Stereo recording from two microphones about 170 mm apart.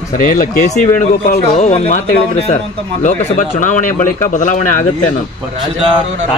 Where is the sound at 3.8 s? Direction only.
15° left (ahead or behind).